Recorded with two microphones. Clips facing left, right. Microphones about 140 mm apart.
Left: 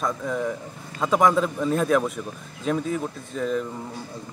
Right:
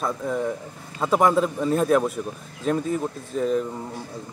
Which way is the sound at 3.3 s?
40° right (ahead or behind).